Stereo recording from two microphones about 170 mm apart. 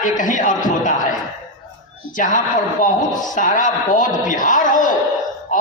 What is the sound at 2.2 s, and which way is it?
A man's voice, 50° left (ahead or behind).